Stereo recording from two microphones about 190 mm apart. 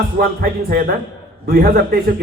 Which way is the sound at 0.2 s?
50° right (ahead or behind).